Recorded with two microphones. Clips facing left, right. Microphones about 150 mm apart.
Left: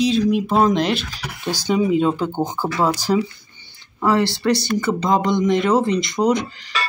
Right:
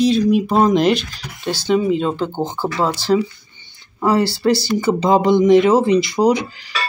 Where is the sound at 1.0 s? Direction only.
70° left (ahead or behind).